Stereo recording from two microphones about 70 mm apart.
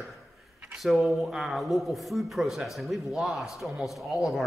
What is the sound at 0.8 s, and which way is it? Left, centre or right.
A man's voice, centre.